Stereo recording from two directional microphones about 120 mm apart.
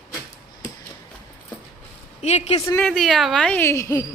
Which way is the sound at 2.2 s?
70° left (ahead or behind).